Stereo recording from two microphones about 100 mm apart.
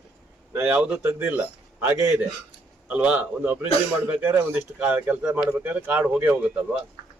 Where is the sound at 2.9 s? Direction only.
15° right (ahead or behind).